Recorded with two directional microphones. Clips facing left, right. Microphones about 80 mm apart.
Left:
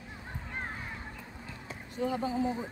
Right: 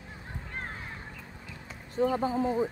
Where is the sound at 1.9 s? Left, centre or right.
Right.